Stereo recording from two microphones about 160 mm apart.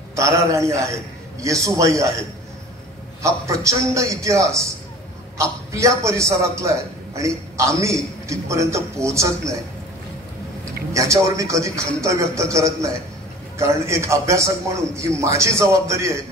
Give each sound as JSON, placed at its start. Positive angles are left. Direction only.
{"t": 0.1, "sound": "a man's voice", "side_deg": -20}
{"t": 3.2, "sound": "a man's voice", "side_deg": -20}
{"t": 10.6, "sound": "a man's voice", "side_deg": -20}